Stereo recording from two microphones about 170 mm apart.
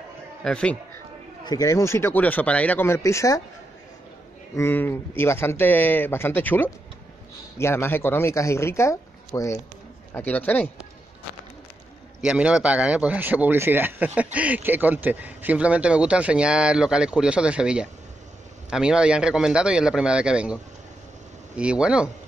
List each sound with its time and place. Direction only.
0.4 s speech: 5° left (ahead or behind)
1.4 s speech: 20° left (ahead or behind)
4.6 s speech: 10° left (ahead or behind)
12.2 s speech: 5° right (ahead or behind)
21.5 s speech: 5° right (ahead or behind)